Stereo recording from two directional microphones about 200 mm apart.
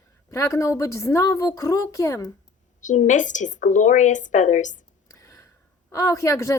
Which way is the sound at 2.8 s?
40° left (ahead or behind).